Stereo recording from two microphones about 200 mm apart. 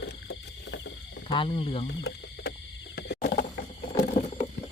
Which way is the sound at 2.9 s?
45° left (ahead or behind).